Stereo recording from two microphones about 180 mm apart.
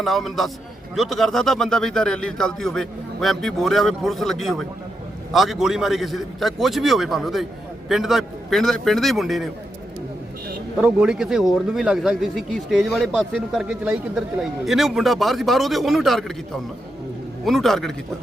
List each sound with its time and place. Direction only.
0.0 s speech: centre (ahead or behind)
10.8 s speech: 5° right (ahead or behind)
17.4 s speech: centre (ahead or behind)